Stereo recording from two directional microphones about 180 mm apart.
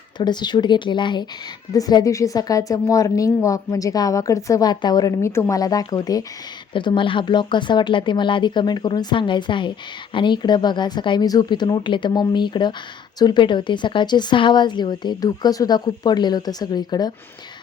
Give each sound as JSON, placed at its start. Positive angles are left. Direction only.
{"t": 0.2, "sound": "speech", "side_deg": 25}